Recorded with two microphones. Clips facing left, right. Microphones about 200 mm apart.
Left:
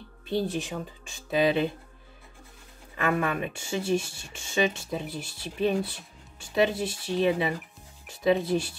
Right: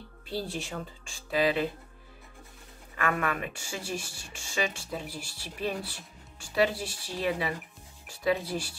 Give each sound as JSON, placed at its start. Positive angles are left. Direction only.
{"t": 0.3, "sound": "speech", "side_deg": 20}
{"t": 3.0, "sound": "speech", "side_deg": 25}